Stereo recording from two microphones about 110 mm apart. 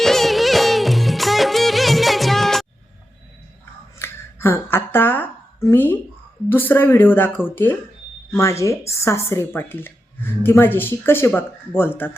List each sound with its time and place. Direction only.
0.0 s music: centre (ahead or behind)
3.9 s a sound: 25° left (ahead or behind)
6.5 s a woman's voice: 20° left (ahead or behind)